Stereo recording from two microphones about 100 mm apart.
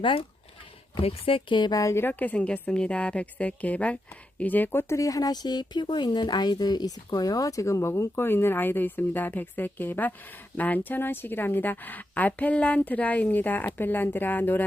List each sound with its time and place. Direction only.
1.0 s speech: 70° left (ahead or behind); by 1.8 s 50° left (ahead or behind)
1.8 s a woman's voice: 25° left (ahead or behind)